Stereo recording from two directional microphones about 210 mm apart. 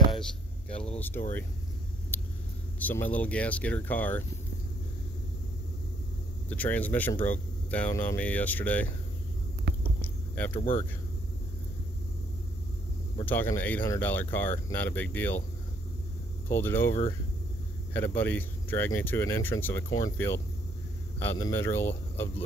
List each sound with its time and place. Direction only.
0.2 s hum: 5° left (ahead or behind)
0.9 s speech: 10° left (ahead or behind)
2.1 s vehicle: 10° left (ahead or behind)
2.8 s speech: 10° left (ahead or behind)
6.5 s speech: 5° left (ahead or behind)
10.3 s speech: 10° left (ahead or behind)
10.6 s speech: 35° left (ahead or behind)
13.2 s speech: 10° left (ahead or behind)
16.4 s speech: 10° left (ahead or behind)
17.9 s speech: 10° left (ahead or behind)